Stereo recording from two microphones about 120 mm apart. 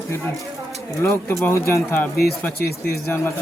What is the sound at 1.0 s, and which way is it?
Speech, 20° left (ahead or behind).